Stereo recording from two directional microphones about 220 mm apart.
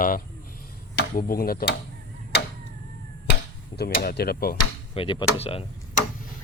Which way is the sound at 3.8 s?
45° left (ahead or behind).